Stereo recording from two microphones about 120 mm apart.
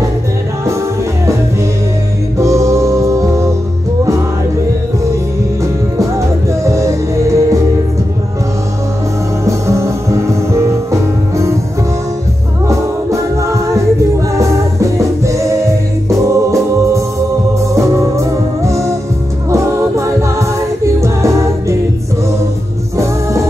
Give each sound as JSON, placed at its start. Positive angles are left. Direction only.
{"t": 2.3, "sound": "music", "side_deg": -25}
{"t": 5.6, "sound": "music", "side_deg": -25}
{"t": 9.4, "sound": "music", "side_deg": -25}
{"t": 12.6, "sound": "music", "side_deg": -25}
{"t": 19.5, "sound": "a capella", "side_deg": -25}